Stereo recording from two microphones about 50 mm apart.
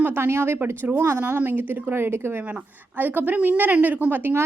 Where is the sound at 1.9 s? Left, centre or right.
Right.